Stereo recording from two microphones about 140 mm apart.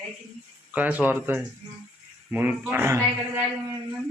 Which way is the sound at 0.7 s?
10° right (ahead or behind).